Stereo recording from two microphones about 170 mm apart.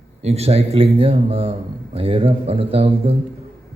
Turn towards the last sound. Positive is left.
turn(degrees=-35)  # may be behind; listen again after turning